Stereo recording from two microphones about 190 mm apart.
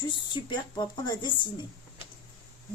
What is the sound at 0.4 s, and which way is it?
Speech, 25° left (ahead or behind).